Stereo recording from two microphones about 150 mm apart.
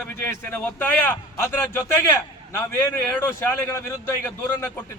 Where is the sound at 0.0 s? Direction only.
10° left (ahead or behind).